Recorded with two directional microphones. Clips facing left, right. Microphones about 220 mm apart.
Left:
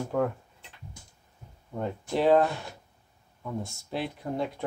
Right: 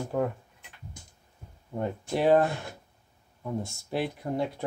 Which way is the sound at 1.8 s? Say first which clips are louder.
Even; 15° right (ahead or behind).